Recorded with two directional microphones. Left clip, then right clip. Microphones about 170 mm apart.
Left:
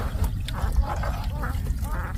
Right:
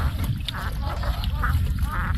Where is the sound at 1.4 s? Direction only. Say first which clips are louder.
Right 5 dB; 40° left (ahead or behind).